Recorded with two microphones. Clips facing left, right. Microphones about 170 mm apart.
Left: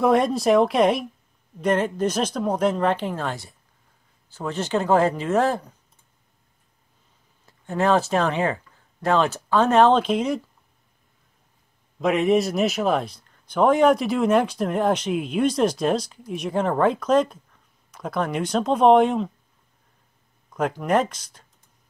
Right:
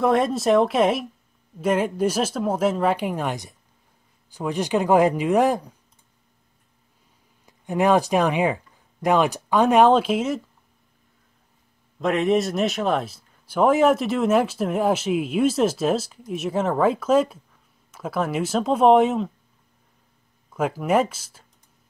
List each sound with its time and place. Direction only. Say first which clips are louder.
0.0 s a man's voice: left 1 dB; centre (ahead or behind)
7.4 s speech: right 2 dB; 15° right (ahead or behind)
12.0 s a man's voice: left 1 dB; centre (ahead or behind)
20.4 s speech: right 1 dB; 5° right (ahead or behind)